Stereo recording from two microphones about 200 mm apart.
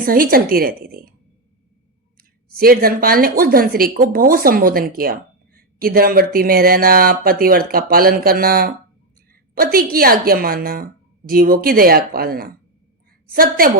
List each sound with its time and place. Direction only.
0.0 s speech: 45° right (ahead or behind)
2.6 s speech: 45° right (ahead or behind)
9.7 s speech: 45° right (ahead or behind)